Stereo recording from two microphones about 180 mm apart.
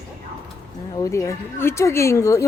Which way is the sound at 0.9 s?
15° left (ahead or behind).